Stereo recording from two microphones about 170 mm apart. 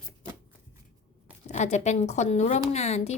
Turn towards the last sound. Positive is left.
turn(degrees=40)  # may be behind; listen again after turning